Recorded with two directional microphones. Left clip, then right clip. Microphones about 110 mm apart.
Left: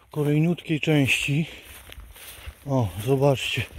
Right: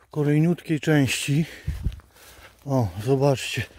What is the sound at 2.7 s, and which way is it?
Speech, 45° right (ahead or behind).